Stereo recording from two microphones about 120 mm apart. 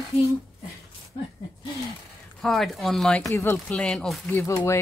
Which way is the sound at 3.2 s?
25° left (ahead or behind).